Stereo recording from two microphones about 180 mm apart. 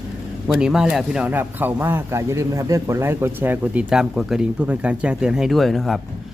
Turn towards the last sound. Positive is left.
turn(degrees=0)  # may be behind; listen again after turning